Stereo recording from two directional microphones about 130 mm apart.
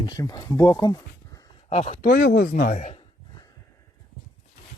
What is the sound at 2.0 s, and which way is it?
Speech, 90° left.